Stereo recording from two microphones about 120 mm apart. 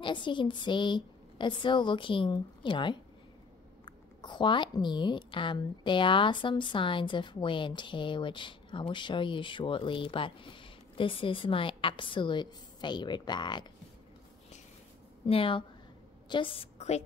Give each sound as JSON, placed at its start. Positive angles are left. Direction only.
{"t": 0.0, "sound": "a woman's voice", "side_deg": 40}
{"t": 15.2, "sound": "a woman's voice", "side_deg": 50}